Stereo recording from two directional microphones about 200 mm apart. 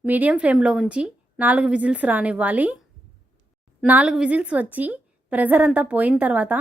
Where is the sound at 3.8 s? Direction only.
5° right (ahead or behind).